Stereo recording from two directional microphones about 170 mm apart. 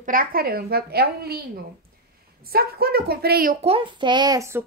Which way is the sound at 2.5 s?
65° right (ahead or behind).